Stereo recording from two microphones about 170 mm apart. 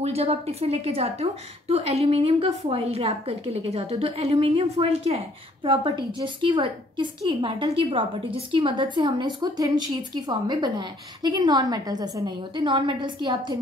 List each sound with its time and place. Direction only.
0.0 s a woman's voice: 40° right (ahead or behind)